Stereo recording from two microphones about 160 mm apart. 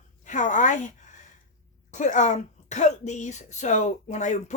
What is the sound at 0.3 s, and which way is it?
Speech, 50° left (ahead or behind).